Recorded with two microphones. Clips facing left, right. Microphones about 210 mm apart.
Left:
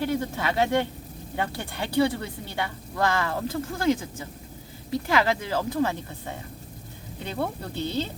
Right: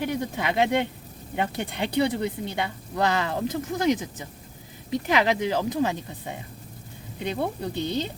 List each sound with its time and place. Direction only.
0.0 s a woman's voice: 15° right (ahead or behind)